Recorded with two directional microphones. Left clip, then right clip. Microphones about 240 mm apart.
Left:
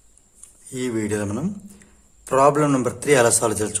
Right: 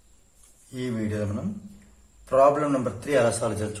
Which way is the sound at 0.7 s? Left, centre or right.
Left.